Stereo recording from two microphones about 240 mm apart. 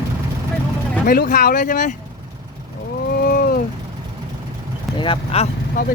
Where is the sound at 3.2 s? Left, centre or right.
Left.